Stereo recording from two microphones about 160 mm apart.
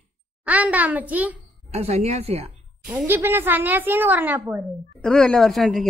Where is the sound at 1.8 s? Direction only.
40° right (ahead or behind).